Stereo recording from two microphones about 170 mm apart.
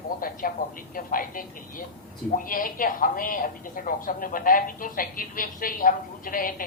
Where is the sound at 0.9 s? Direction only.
55° left (ahead or behind).